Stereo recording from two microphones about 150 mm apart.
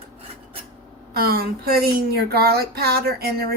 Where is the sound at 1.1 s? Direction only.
90° right.